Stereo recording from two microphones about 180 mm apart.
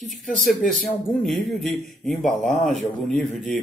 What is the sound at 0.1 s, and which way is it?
A man's voice, centre (ahead or behind).